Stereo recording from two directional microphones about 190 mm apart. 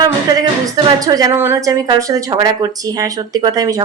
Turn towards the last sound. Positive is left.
turn(degrees=-20)  # may be behind; listen again after turning